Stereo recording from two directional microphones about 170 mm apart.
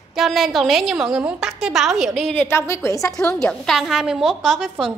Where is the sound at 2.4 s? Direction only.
15° left (ahead or behind).